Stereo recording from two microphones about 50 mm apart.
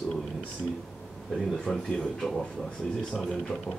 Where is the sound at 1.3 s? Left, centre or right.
Centre.